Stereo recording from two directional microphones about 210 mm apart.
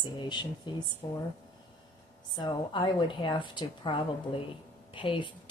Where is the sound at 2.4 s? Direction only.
20° left (ahead or behind).